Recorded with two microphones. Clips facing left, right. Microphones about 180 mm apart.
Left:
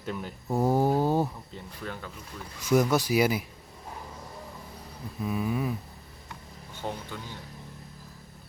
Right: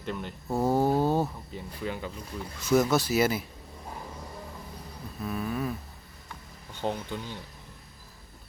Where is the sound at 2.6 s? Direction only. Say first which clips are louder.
Even; 15° left (ahead or behind).